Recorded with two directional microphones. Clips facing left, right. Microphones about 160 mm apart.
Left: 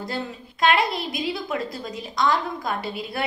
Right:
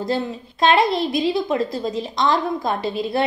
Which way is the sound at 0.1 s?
25° right (ahead or behind).